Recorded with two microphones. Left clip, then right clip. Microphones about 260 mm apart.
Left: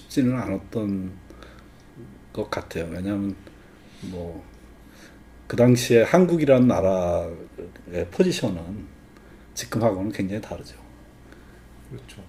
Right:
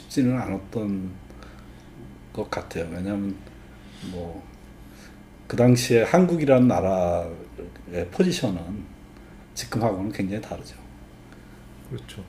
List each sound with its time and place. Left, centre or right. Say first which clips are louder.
0.1 s speech: left 1 dB; left
2.3 s speech: left 1 dB; left
5.5 s speech: left 1 dB; centre
9.6 s speech: left 2 dB; centre